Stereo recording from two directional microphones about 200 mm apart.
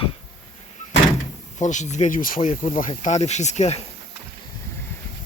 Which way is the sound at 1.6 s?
35° left (ahead or behind).